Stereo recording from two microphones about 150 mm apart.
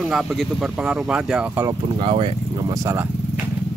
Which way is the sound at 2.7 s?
15° right (ahead or behind).